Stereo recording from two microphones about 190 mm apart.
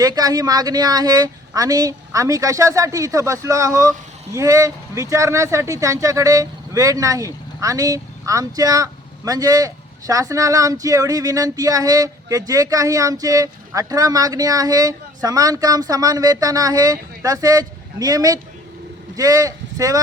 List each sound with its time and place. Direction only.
0.0 s speech: 20° right (ahead or behind)